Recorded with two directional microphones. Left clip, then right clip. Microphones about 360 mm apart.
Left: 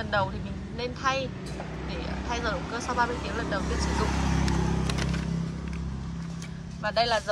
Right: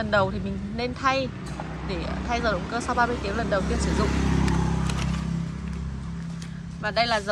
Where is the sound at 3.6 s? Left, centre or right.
Left.